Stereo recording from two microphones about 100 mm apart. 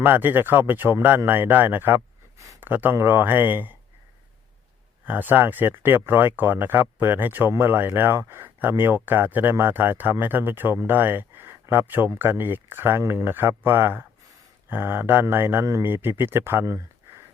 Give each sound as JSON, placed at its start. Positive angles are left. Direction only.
{"t": 0.0, "sound": "speech", "side_deg": -20}
{"t": 5.0, "sound": "speech", "side_deg": -20}
{"t": 16.6, "sound": "a sound", "side_deg": -30}